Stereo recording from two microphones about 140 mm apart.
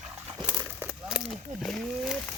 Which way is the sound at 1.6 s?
Centre (ahead or behind).